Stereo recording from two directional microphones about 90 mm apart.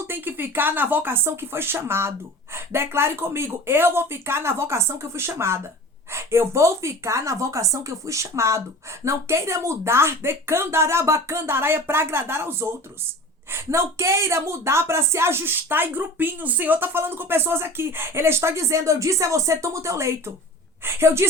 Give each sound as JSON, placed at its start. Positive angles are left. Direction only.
{"t": 0.1, "sound": "a woman's voice", "side_deg": -20}